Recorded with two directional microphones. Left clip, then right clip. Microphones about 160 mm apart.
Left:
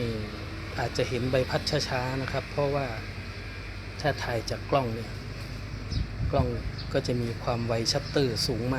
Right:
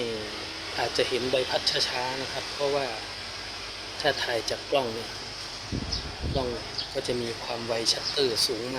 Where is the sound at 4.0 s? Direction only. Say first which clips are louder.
Right 3 dB; 15° right (ahead or behind).